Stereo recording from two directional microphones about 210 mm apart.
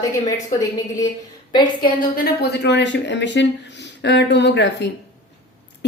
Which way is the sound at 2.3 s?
50° left (ahead or behind).